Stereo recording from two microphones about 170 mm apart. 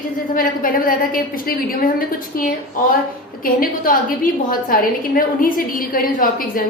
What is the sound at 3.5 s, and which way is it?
A woman's voice, 55° left (ahead or behind).